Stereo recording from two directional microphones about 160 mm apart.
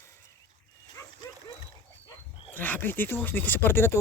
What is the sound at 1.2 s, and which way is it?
Dog, 20° left (ahead or behind).